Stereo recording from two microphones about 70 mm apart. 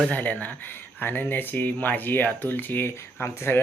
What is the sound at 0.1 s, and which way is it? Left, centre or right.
A man's voice, left.